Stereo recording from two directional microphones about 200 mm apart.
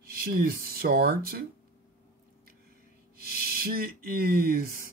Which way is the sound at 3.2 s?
45° right (ahead or behind).